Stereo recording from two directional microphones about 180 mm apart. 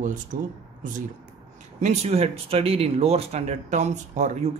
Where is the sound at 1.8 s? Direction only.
35° right (ahead or behind).